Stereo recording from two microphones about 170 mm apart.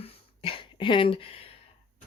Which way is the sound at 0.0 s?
30° left (ahead or behind).